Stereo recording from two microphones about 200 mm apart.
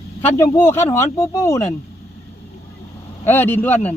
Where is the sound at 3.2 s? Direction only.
10° left (ahead or behind).